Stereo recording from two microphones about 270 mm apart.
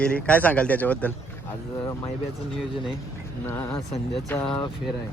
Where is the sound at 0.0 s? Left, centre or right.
Centre.